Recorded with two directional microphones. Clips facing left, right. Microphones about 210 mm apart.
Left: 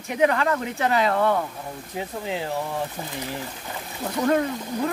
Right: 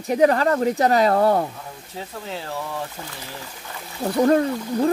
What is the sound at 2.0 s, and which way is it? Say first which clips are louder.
Speech: left 3 dB; 15° left (ahead or behind).